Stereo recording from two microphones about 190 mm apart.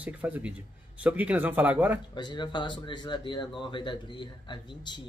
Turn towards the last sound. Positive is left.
turn(degrees=25)  # may be behind; listen again after turning